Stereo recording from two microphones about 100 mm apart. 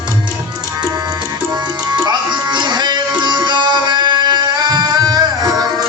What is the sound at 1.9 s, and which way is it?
Music, 50° right (ahead or behind).